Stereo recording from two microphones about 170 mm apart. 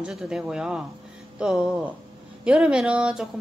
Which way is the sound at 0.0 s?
Centre (ahead or behind).